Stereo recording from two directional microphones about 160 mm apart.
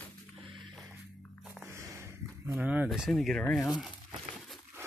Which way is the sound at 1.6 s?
20° right (ahead or behind).